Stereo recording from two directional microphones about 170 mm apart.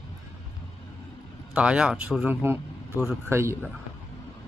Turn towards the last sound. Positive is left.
turn(degrees=-15)  # may be behind; listen again after turning